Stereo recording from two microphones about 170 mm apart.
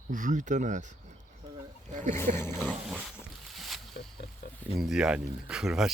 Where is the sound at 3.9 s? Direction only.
70° left (ahead or behind).